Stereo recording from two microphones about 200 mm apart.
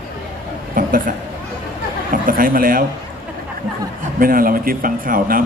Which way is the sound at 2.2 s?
45° right (ahead or behind).